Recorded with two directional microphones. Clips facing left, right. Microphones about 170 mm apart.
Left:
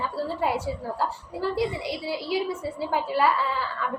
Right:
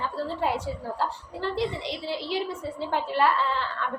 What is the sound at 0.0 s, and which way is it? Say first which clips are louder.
A woman's voice: left 1 dB; 5° left (ahead or behind).